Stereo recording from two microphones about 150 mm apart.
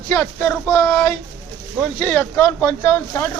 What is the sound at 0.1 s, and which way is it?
Speech, 15° left (ahead or behind).